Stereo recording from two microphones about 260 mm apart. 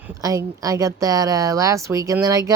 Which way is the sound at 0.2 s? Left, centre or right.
Centre.